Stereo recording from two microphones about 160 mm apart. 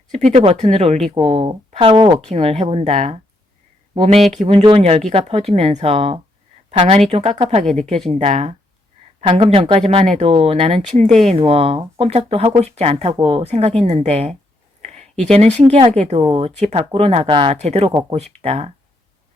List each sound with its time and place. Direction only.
0.3 s speech: 40° right (ahead or behind)